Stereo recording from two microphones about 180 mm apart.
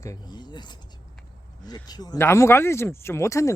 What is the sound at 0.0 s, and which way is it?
Speech, 20° left (ahead or behind).